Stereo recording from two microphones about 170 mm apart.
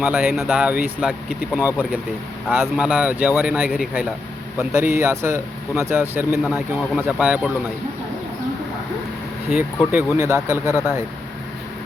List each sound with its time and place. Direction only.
0.0 s speech: 10° right (ahead or behind)
9.9 s speech: 15° right (ahead or behind)